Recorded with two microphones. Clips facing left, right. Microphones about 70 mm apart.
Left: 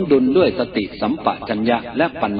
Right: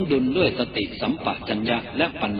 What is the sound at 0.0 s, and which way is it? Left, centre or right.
A man's voice, left.